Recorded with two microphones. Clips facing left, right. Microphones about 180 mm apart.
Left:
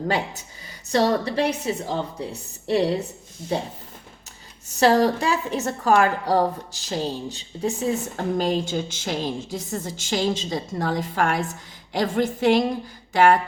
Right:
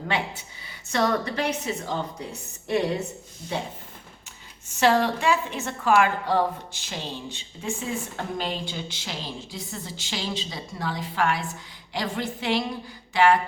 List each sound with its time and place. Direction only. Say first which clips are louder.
0.9 s a woman's voice: left 4 dB; 30° left (ahead or behind)
4.7 s a woman's voice: left 3 dB; 40° left (ahead or behind)